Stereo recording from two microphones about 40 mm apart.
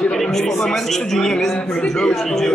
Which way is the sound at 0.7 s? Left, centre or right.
Centre.